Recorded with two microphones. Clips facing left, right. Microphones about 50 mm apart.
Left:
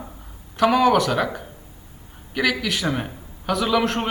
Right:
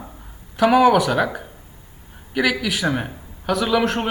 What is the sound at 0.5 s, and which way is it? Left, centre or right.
Speech, centre.